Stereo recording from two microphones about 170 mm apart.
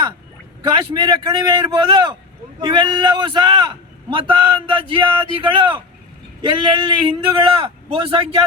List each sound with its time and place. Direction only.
0.6 s a man's voice: 25° right (ahead or behind)